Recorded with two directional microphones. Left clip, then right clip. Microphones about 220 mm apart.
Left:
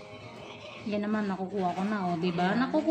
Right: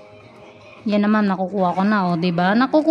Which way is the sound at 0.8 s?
55° right (ahead or behind).